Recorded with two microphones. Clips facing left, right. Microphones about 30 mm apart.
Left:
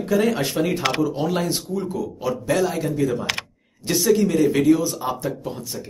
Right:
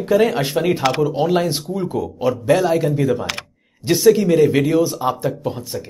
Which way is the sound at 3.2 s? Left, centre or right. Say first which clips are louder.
Even; centre.